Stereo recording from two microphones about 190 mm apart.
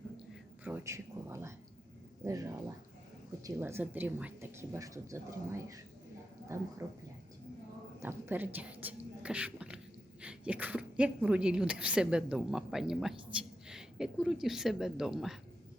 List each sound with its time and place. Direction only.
0.6 s speech: 10° right (ahead or behind)
6.8 s a woman's voice: 15° right (ahead or behind)